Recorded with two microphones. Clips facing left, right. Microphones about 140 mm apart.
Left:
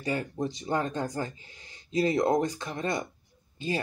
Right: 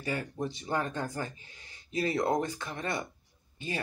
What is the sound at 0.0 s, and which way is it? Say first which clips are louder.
Speech: left 3 dB; 25° left (ahead or behind).